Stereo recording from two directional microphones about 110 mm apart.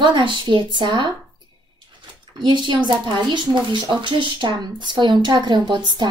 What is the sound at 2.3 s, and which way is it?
A woman's voice, 45° right (ahead or behind).